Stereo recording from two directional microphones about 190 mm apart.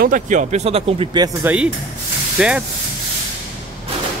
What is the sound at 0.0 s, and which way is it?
Speech, 40° right (ahead or behind).